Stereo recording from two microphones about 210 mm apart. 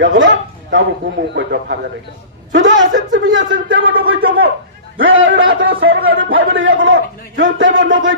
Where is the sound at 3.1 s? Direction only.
65° right (ahead or behind).